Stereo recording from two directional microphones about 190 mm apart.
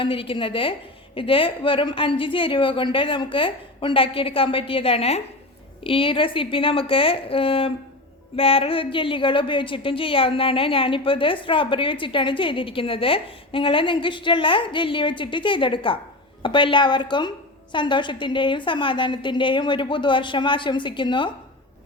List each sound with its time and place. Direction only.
0.0 s a woman's voice: 30° left (ahead or behind)